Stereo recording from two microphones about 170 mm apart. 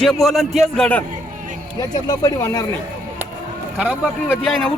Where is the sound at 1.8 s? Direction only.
20° left (ahead or behind).